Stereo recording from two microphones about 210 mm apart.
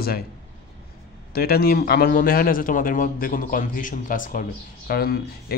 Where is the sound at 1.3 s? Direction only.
45° left (ahead or behind).